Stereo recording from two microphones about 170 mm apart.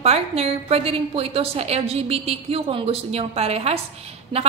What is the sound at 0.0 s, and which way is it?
A woman's voice, 35° right (ahead or behind).